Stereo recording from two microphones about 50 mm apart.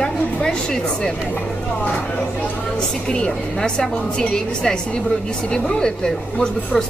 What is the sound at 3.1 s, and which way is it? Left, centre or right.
A woman's voice, centre.